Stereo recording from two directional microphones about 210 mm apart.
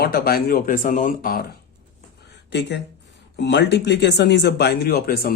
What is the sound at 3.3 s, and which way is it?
Speech, 55° left (ahead or behind).